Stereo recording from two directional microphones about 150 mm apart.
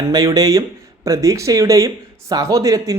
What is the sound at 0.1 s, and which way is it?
A woman's voice, 25° right (ahead or behind).